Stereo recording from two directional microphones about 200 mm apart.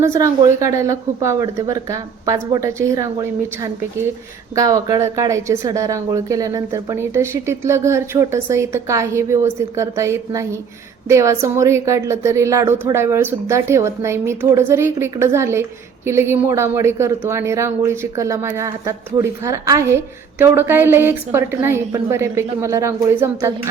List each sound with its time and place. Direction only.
0.0 s speech: 15° right (ahead or behind)